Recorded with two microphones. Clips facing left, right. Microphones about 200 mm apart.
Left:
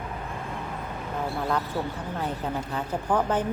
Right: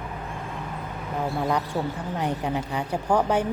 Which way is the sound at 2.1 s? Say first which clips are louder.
Right 3 dB; 15° right (ahead or behind).